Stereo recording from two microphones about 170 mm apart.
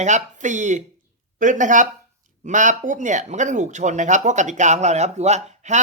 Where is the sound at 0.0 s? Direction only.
45° right (ahead or behind).